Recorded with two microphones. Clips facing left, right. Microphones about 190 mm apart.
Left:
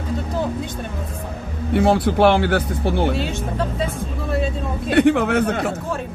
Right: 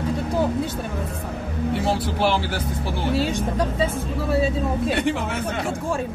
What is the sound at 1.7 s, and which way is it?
Speech, 60° left (ahead or behind).